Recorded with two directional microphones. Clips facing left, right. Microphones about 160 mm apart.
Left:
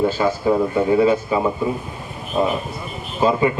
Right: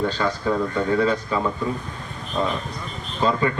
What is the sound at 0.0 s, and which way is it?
Speech, 5° left (ahead or behind).